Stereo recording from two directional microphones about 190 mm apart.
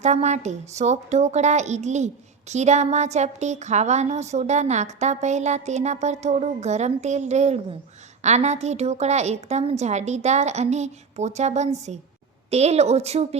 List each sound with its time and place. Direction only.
0.0 s a woman's voice: 35° right (ahead or behind)